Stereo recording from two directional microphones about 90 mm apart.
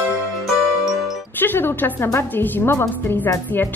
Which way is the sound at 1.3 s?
25° left (ahead or behind).